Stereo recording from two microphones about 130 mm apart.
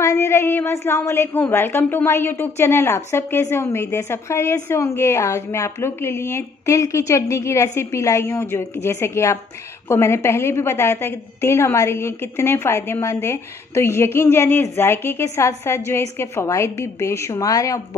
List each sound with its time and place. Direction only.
0.0 s a woman's voice: 25° left (ahead or behind)